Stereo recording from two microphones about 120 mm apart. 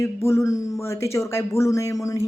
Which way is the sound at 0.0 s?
25° left (ahead or behind).